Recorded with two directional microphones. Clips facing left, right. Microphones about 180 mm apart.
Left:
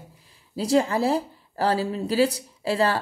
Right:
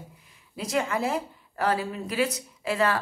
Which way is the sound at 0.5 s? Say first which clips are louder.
Left 6 dB; 30° left (ahead or behind).